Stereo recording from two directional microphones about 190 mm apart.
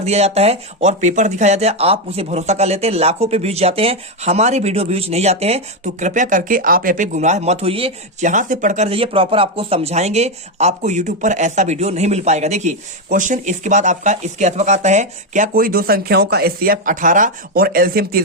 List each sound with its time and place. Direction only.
0.0 s speech: 35° right (ahead or behind); by 18.2 s 50° right (ahead or behind)